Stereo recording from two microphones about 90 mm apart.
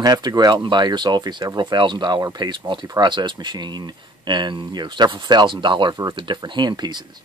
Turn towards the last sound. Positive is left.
turn(degrees=-50)  # may be behind; listen again after turning